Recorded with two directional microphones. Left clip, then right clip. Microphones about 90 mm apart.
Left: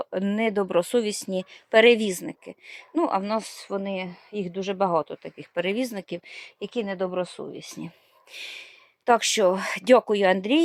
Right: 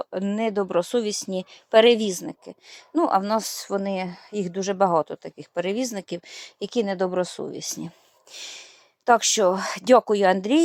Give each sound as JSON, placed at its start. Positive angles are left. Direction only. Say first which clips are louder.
{"t": 0.0, "sound": "speech", "louder": "even", "side_deg": 25}
{"t": 2.9, "sound": "speech", "louder": "right 3 dB", "side_deg": -15}
{"t": 5.2, "sound": "speech", "louder": "even", "side_deg": 0}
{"t": 5.9, "sound": "speech", "louder": "right 2 dB", "side_deg": -15}
{"t": 6.6, "sound": "speech", "louder": "right 4 dB", "side_deg": -50}
{"t": 7.8, "sound": "speech", "louder": "right 2 dB", "side_deg": -5}